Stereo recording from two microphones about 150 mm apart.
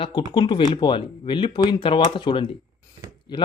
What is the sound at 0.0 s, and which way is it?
Speech, 30° left (ahead or behind).